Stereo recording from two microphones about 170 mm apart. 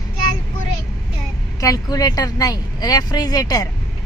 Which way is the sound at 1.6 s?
20° left (ahead or behind).